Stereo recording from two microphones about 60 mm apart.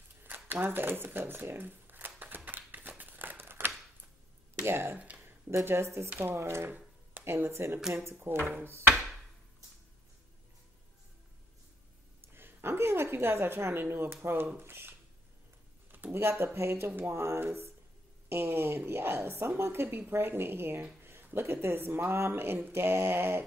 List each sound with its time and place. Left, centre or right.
0.2 s shuffling cards: right
4.6 s speech: right
6.0 s a woman's voice: right
6.3 s a woman's voice: right
8.9 s a sound: centre
12.2 s a sound: right
14.6 s a woman's voice: right